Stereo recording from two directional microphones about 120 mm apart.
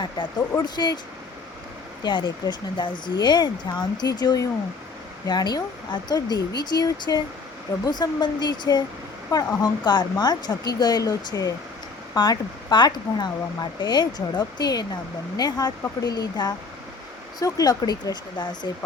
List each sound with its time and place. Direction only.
0.0 s speech: 40° left (ahead or behind)
2.0 s speech: 40° left (ahead or behind)